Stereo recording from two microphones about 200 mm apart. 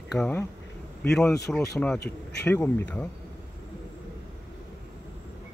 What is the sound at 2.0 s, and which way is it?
Speech, 55° left (ahead or behind).